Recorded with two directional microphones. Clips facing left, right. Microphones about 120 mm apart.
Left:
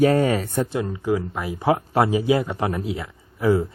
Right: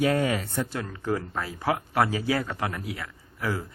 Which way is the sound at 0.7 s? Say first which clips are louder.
Left 7 dB; 15° left (ahead or behind).